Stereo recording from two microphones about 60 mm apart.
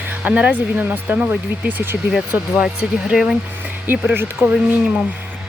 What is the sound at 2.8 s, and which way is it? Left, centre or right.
Speech, centre.